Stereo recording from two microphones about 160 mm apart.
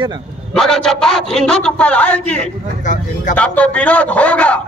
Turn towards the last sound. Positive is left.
turn(degrees=10)  # may be behind; listen again after turning